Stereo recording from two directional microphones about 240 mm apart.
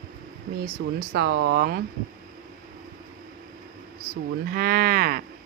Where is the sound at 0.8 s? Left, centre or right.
Right.